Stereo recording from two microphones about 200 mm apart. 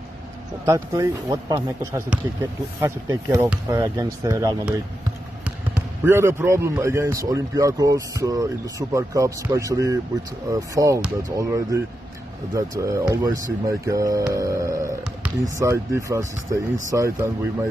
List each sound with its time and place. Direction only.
0.7 s a man's voice: 15° right (ahead or behind)
6.0 s a man's voice: 15° right (ahead or behind)